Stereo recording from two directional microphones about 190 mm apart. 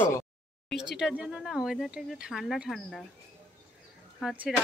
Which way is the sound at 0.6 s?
5° right (ahead or behind).